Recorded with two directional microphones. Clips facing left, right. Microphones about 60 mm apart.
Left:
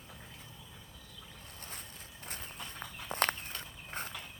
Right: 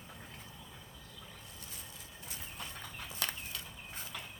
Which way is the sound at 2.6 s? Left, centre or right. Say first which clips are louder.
Right 2 dB; centre.